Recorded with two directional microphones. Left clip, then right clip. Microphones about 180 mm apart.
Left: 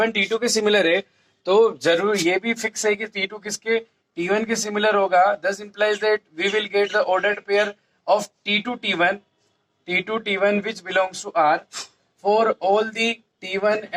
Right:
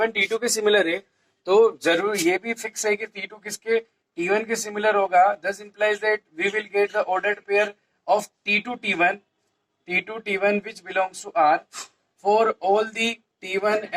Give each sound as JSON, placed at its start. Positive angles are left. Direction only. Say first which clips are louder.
{"t": 0.0, "sound": "speech", "louder": "left 2 dB", "side_deg": 25}
{"t": 1.5, "sound": "speech", "louder": "left 1 dB", "side_deg": 35}